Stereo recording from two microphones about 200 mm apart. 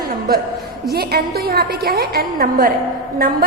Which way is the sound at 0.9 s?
50° right (ahead or behind).